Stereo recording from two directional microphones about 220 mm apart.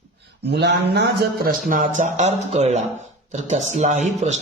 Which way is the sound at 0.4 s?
50° right (ahead or behind).